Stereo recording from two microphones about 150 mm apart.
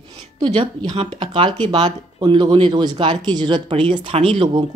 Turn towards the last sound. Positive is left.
turn(degrees=-35)  # may be behind; listen again after turning